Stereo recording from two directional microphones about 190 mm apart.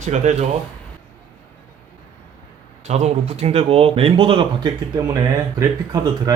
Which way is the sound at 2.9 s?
35° right (ahead or behind).